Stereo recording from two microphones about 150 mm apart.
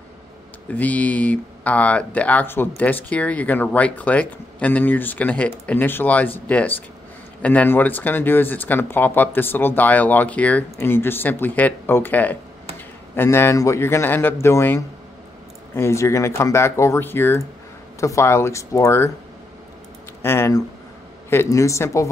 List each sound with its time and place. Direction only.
0.7 s speech: 10° left (ahead or behind)
20.2 s speech: 15° left (ahead or behind)